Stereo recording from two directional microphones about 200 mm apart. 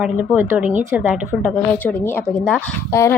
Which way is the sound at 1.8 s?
10° left (ahead or behind).